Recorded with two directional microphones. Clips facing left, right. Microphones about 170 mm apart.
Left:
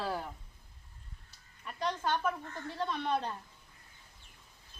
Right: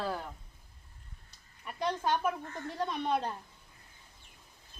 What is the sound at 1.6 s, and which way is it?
Speech, 15° right (ahead or behind).